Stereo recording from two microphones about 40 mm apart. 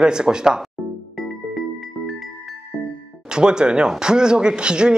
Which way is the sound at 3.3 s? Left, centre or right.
Right.